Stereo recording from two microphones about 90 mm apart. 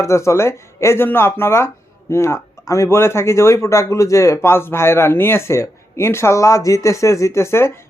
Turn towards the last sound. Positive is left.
turn(degrees=30)  # may be behind; listen again after turning